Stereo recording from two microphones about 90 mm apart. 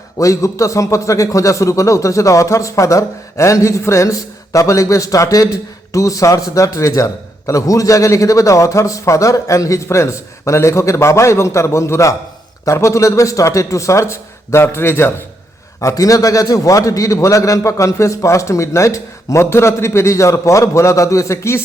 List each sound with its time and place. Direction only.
0.2 s a man's voice: 35° left (ahead or behind)